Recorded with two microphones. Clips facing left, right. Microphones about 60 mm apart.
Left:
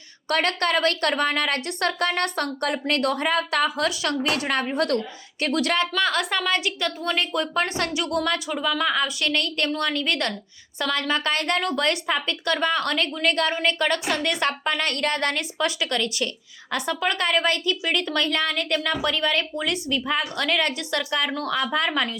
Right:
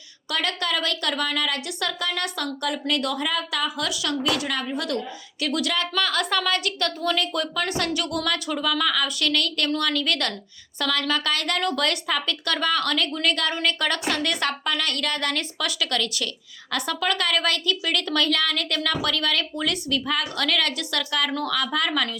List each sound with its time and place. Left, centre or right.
0.3 s a woman's voice: left
8.4 s a woman's voice: centre